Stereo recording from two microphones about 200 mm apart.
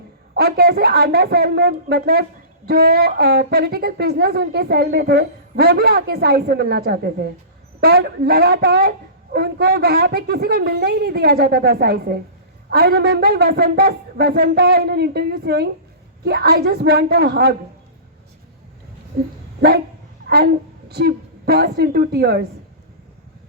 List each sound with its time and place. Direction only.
0.3 s a woman's voice: 50° right (ahead or behind)
19.1 s a woman's voice: 50° right (ahead or behind)